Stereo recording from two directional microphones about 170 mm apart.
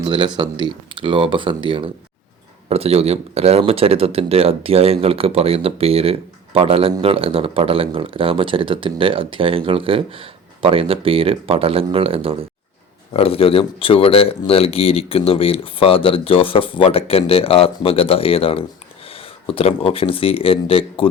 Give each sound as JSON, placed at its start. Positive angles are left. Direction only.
{"t": 0.0, "sound": "speech", "side_deg": -25}
{"t": 13.1, "sound": "speech", "side_deg": 35}